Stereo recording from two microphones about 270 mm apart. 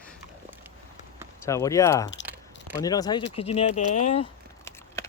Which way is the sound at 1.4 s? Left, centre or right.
Centre.